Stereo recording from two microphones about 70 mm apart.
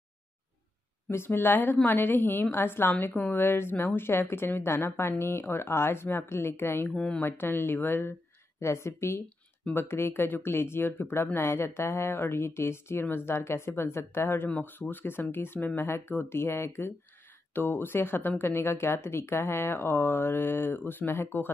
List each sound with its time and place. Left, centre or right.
1.0 s a woman's voice: left
6.9 s speech: centre
7.2 s speech: left
8.5 s speech: left